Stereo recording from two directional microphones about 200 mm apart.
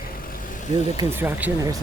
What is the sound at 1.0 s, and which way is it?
Speech, 10° right (ahead or behind).